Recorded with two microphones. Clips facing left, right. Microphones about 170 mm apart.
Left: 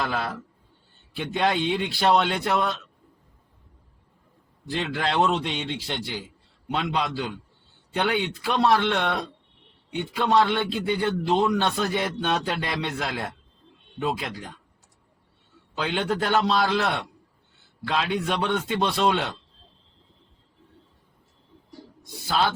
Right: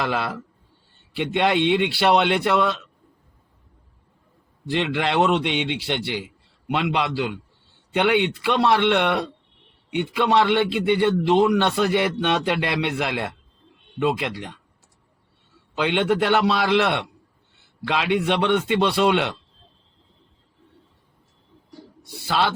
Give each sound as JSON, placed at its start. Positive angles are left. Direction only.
{"t": 0.0, "sound": "a man's voice", "side_deg": -70}
{"t": 4.6, "sound": "a man's voice", "side_deg": -75}
{"t": 15.8, "sound": "a man's voice", "side_deg": -70}